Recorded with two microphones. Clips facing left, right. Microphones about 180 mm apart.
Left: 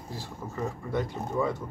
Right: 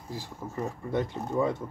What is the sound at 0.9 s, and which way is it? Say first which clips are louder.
Speech: right 2 dB; 20° right (ahead or behind).